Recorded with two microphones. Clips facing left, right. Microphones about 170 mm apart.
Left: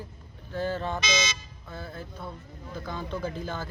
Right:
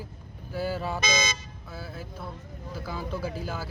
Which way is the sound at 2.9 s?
5° right (ahead or behind).